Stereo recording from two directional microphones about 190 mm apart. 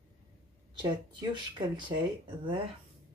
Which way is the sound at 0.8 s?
25° right (ahead or behind).